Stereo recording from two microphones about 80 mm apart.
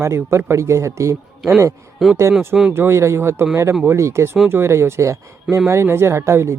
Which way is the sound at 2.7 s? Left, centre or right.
Right.